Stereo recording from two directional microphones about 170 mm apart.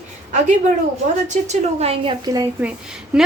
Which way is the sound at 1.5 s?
35° right (ahead or behind).